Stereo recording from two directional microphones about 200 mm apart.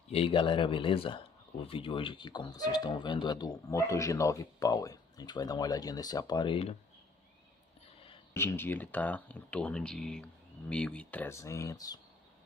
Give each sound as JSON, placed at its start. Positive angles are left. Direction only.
{"t": 0.1, "sound": "speech", "side_deg": 25}
{"t": 8.3, "sound": "speech", "side_deg": 10}